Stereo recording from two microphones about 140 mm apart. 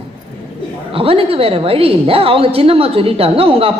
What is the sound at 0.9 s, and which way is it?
A woman's voice, 40° right (ahead or behind).